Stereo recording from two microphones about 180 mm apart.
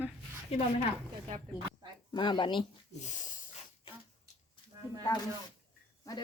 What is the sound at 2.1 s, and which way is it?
Speech, 25° left (ahead or behind).